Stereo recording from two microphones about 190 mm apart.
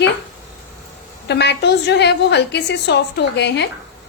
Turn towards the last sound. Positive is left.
turn(degrees=65)  # may be behind; listen again after turning